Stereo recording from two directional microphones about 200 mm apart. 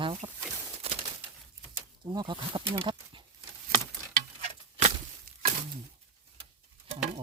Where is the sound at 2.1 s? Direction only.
25° right (ahead or behind).